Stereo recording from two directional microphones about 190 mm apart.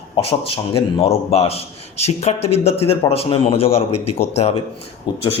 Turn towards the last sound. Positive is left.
turn(degrees=25)  # may be behind; listen again after turning